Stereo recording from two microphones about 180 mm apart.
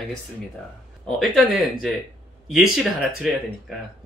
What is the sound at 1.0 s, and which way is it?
Speech, centre (ahead or behind).